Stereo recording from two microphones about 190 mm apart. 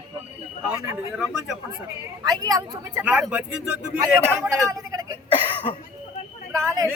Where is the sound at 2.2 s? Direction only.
20° right (ahead or behind).